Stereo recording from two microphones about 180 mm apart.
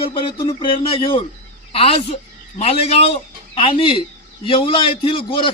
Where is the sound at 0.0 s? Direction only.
30° left (ahead or behind).